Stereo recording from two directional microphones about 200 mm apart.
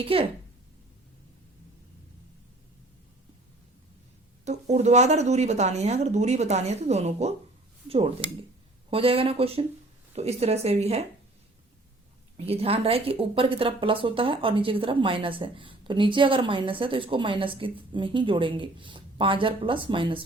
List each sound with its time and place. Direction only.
0.0 s speech: 30° right (ahead or behind)
4.4 s speech: 35° right (ahead or behind)
12.5 s speech: 30° right (ahead or behind)